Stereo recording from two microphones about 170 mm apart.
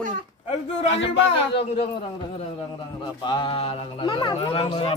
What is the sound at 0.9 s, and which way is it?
Speech, 90° left.